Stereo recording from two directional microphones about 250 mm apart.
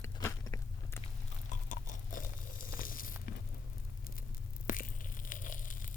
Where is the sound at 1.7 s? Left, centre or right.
Left.